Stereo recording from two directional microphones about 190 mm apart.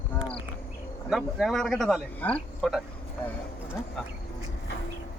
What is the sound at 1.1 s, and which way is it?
Speech, centre (ahead or behind).